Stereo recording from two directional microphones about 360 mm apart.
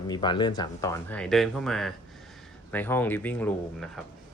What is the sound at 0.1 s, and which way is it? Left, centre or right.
Speech, centre.